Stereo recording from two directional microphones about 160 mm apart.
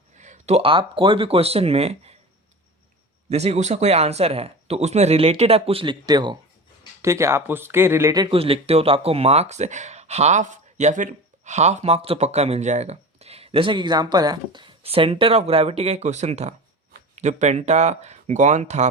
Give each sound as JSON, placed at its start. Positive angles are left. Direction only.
{"t": 0.2, "sound": "speech", "side_deg": -45}
{"t": 3.2, "sound": "speech", "side_deg": -45}
{"t": 8.4, "sound": "speech", "side_deg": -35}
{"t": 14.8, "sound": "speech", "side_deg": -35}